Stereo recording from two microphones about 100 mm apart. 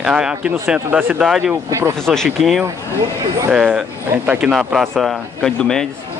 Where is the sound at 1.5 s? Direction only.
25° right (ahead or behind).